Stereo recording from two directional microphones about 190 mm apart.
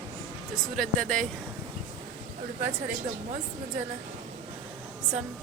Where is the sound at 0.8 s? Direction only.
5° left (ahead or behind).